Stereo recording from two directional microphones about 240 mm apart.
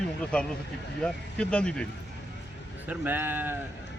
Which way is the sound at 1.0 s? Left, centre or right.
Centre.